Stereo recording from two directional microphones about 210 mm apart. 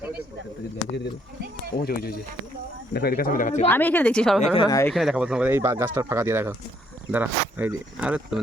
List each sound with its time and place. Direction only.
1.7 s speech: 45° left (ahead or behind)
3.7 s a woman's voice: 10° left (ahead or behind)
4.5 s speech: 20° left (ahead or behind)
4.9 s speech: centre (ahead or behind)